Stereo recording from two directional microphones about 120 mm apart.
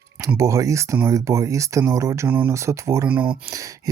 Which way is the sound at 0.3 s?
25° right (ahead or behind).